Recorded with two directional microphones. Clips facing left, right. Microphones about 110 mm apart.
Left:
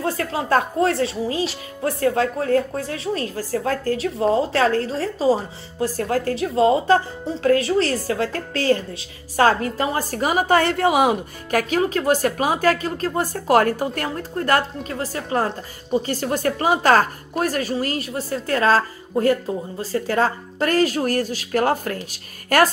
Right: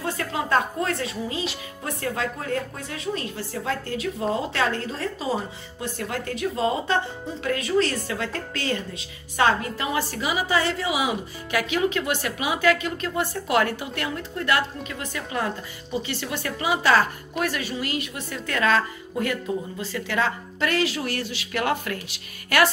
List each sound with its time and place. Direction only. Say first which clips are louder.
0.0 s a woman's voice: left 4 dB; 35° left (ahead or behind)